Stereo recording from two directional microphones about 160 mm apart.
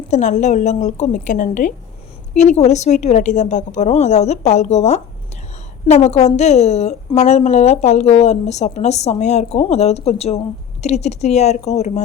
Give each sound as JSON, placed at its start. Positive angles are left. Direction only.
{"t": 0.1, "sound": "a woman's voice", "side_deg": 50}